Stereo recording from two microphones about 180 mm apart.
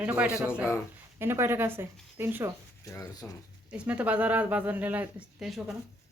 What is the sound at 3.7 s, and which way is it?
A woman's voice, 5° right (ahead or behind).